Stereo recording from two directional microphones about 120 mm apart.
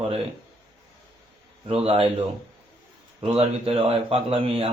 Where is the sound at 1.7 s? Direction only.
55° right (ahead or behind).